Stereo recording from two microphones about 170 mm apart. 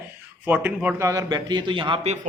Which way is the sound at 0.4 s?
10° right (ahead or behind).